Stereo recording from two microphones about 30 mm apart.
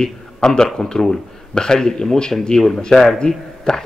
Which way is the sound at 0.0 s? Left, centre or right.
Centre.